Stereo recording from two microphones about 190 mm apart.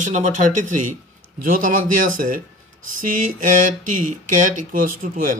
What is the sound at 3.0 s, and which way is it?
Speech, 45° right (ahead or behind).